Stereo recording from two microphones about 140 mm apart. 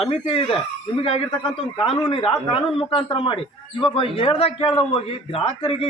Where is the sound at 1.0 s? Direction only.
40° left (ahead or behind).